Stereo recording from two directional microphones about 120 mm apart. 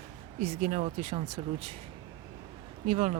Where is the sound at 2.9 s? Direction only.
60° right (ahead or behind).